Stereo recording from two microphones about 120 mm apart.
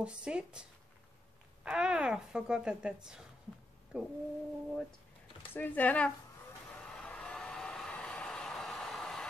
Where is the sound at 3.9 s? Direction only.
10° right (ahead or behind).